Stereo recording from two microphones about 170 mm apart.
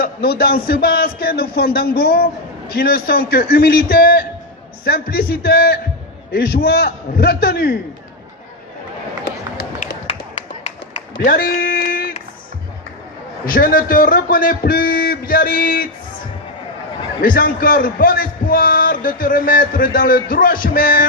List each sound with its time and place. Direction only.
0.0 s a man's voice: 60° left (ahead or behind)
11.2 s a man's voice: 60° left (ahead or behind)
13.4 s a man's voice: 55° left (ahead or behind)
17.2 s a man's voice: 55° left (ahead or behind)